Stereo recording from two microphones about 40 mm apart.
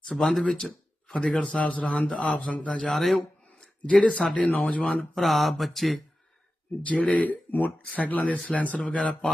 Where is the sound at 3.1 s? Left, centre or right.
Left.